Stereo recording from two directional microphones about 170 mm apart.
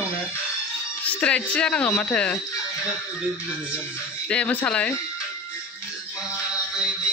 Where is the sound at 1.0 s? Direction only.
5° left (ahead or behind).